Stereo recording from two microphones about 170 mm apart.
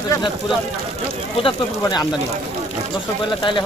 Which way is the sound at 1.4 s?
25° left (ahead or behind).